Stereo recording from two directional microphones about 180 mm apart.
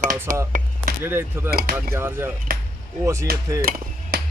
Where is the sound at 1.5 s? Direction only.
60° right (ahead or behind).